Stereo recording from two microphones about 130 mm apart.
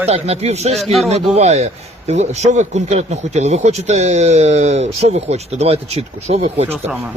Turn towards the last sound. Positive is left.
turn(degrees=-55)  # may be behind; listen again after turning